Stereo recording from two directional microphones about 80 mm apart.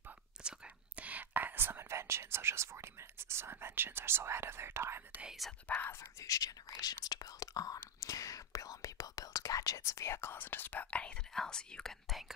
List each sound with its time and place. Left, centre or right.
0.4 s whispering: centre; by 5.2 s right
5.7 s speech: centre
6.2 s speech: left
6.8 s whispering: left; by 11.9 s centre
12.1 s speech: centre